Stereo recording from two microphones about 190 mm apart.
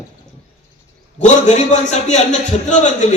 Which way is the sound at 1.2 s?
40° left (ahead or behind).